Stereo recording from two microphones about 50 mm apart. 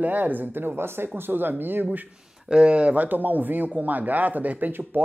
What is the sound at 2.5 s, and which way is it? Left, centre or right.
Speech, right.